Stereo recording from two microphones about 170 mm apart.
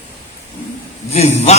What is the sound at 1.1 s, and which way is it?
Speech, 40° left (ahead or behind).